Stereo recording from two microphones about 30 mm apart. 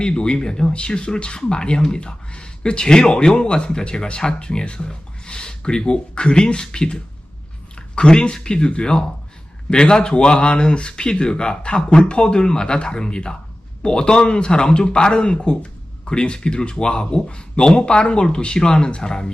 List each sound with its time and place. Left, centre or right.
0.0 s speech: left